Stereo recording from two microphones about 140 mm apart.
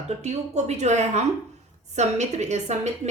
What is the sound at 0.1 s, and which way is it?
A woman's voice, 55° right (ahead or behind).